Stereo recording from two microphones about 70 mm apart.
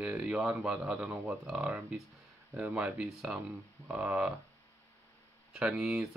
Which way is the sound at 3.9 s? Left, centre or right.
Centre.